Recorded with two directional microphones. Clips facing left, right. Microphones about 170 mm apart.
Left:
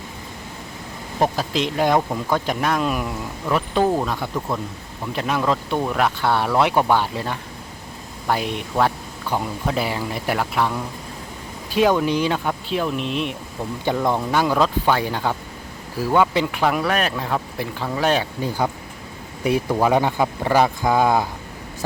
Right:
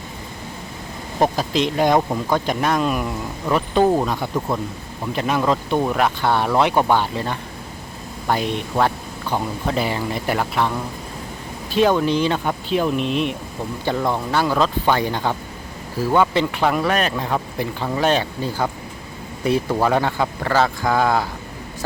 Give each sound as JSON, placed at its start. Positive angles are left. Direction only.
{"t": 1.2, "sound": "speech", "side_deg": 5}
{"t": 4.4, "sound": "speech", "side_deg": -15}
{"t": 5.1, "sound": "speech", "side_deg": 0}
{"t": 13.8, "sound": "speech", "side_deg": 15}